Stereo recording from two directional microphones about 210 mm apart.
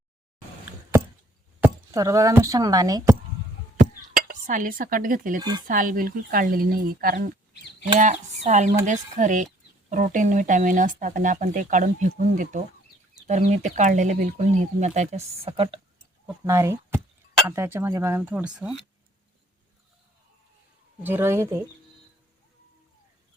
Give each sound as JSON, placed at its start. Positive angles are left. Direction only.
{"t": 1.6, "sound": "speech", "side_deg": -15}
{"t": 3.8, "sound": "dishes", "side_deg": -40}
{"t": 5.4, "sound": "speech", "side_deg": -20}
{"t": 5.6, "sound": "speech", "side_deg": -40}
{"t": 8.4, "sound": "speech", "side_deg": -35}
{"t": 16.2, "sound": "speech", "side_deg": -15}
{"t": 21.0, "sound": "speech", "side_deg": -10}